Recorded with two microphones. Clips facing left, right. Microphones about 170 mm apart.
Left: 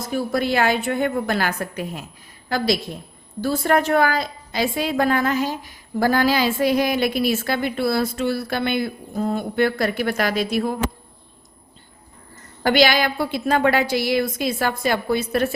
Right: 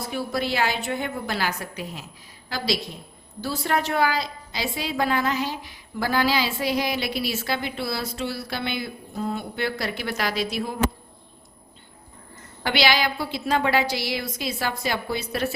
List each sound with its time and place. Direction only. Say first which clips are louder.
0.0 s a woman's voice: left 5 dB; 45° left (ahead or behind)
3.4 s a woman's voice: left 6 dB; 50° left (ahead or behind)
12.6 s a woman's voice: left 5 dB; 45° left (ahead or behind)